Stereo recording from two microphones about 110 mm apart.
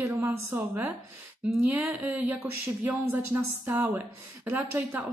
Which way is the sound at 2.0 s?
15° right (ahead or behind).